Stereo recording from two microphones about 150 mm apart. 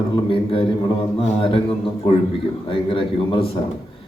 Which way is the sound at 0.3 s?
35° left (ahead or behind).